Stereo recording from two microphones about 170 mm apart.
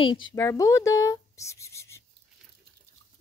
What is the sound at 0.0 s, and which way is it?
Speech, 25° left (ahead or behind).